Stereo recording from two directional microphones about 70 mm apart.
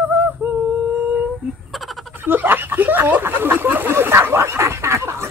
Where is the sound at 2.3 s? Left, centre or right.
Right.